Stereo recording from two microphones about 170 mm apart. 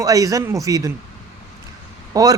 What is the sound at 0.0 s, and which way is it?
Speech, 20° right (ahead or behind).